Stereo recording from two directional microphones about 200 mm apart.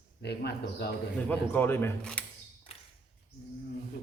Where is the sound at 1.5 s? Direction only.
10° left (ahead or behind).